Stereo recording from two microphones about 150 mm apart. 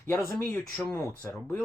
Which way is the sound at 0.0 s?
15° left (ahead or behind).